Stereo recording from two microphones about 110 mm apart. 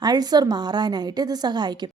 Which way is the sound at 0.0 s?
40° right (ahead or behind).